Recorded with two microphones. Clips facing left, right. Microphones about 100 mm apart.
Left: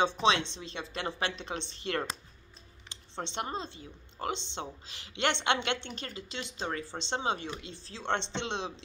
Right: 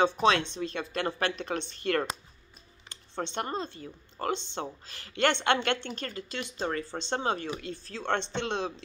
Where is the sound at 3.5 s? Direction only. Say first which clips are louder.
Right 3 dB; 20° left (ahead or behind).